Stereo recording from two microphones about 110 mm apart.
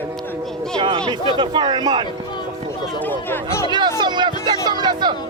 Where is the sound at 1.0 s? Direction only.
45° right (ahead or behind).